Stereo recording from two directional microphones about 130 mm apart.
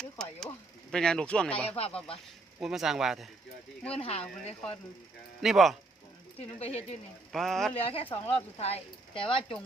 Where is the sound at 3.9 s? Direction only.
50° left (ahead or behind).